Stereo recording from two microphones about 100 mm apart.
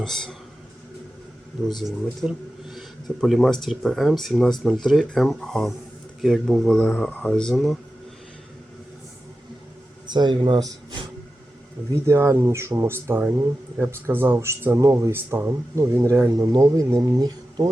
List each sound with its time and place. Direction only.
0.0 s speech: 5° left (ahead or behind)
1.8 s speech: centre (ahead or behind)
7.1 s speech: 15° left (ahead or behind)
7.3 s speech: 5° left (ahead or behind)
10.1 s speech: 50° right (ahead or behind)
12.0 s speech: 25° right (ahead or behind)
16.3 s speech: 35° right (ahead or behind)